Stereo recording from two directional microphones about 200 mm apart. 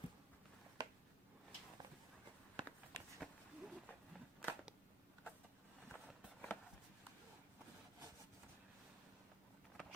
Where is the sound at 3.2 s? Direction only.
Centre (ahead or behind).